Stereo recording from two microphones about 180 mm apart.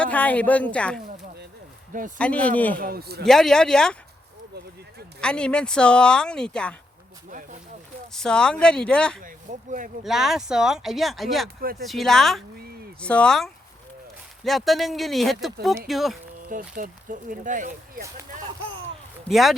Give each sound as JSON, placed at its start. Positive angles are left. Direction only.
{"t": 0.0, "sound": "speech", "side_deg": 10}
{"t": 1.9, "sound": "speech", "side_deg": -45}
{"t": 2.1, "sound": "speech", "side_deg": 5}
{"t": 2.7, "sound": "a man's voice", "side_deg": -55}
{"t": 3.2, "sound": "speech", "side_deg": 0}
{"t": 5.2, "sound": "speech", "side_deg": 5}
{"t": 8.1, "sound": "speech", "side_deg": 5}
{"t": 9.2, "sound": "speech", "side_deg": -45}
{"t": 10.0, "sound": "speech", "side_deg": 0}
{"t": 16.5, "sound": "speech", "side_deg": -50}
{"t": 19.3, "sound": "speech", "side_deg": 0}